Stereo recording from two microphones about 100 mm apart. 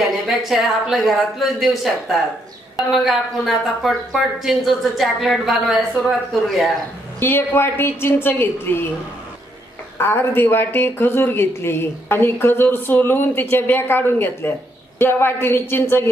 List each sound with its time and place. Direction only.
0.3 s speech: centre (ahead or behind)
7.2 s speech: 25° left (ahead or behind)
9.9 s speech: 25° left (ahead or behind)